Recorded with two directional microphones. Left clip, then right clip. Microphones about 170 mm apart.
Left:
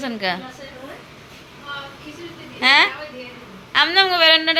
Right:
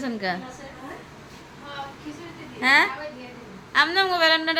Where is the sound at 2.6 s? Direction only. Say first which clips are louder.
Left 4 dB; 5° right (ahead or behind).